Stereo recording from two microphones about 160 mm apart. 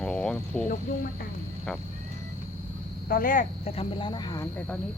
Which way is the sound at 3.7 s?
35° left (ahead or behind).